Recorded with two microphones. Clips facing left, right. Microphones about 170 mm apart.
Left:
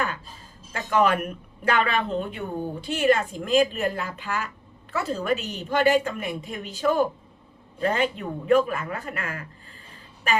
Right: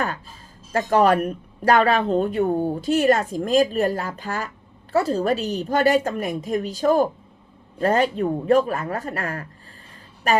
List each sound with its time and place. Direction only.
0.7 s speech: 40° right (ahead or behind)